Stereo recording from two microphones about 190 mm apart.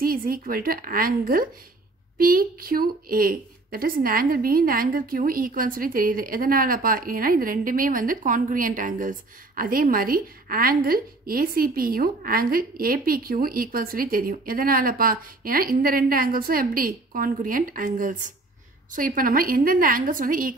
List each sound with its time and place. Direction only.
0.0 s a woman's voice: 50° right (ahead or behind)